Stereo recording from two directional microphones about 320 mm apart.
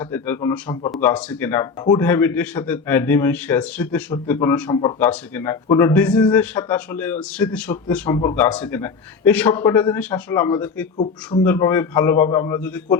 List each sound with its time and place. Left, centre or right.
0.0 s a man's voice: centre
10.9 s a man's voice: centre